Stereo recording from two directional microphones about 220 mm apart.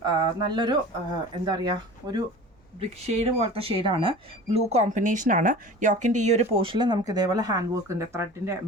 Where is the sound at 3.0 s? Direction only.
30° right (ahead or behind).